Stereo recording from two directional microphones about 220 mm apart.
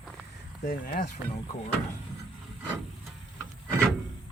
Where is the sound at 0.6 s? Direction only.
40° left (ahead or behind).